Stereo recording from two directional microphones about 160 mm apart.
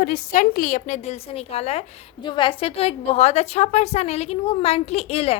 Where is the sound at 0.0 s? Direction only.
55° left (ahead or behind).